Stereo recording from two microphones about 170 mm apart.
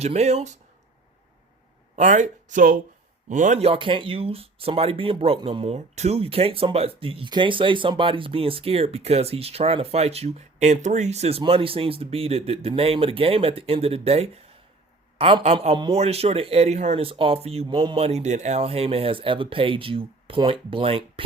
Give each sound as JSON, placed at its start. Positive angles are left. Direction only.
{"t": 0.0, "sound": "speech", "side_deg": -40}
{"t": 2.0, "sound": "speech", "side_deg": -45}